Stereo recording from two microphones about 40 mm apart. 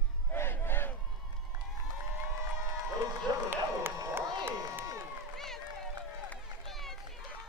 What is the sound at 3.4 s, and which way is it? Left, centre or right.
Crowd, right.